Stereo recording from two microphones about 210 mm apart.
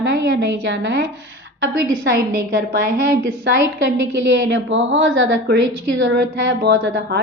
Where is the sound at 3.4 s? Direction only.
55° right (ahead or behind).